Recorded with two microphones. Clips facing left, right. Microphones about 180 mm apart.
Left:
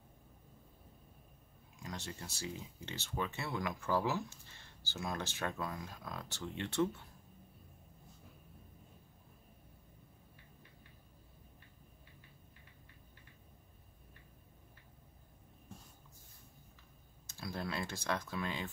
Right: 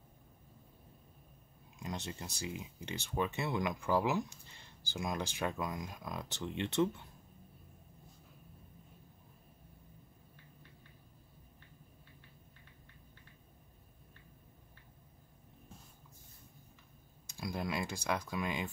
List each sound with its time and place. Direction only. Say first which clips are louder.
1.8 s speech: right 3 dB; 20° right (ahead or behind)
17.3 s speech: right 3 dB; 15° right (ahead or behind)